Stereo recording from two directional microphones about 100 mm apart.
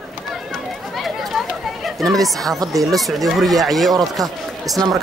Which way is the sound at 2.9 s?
Centre (ahead or behind).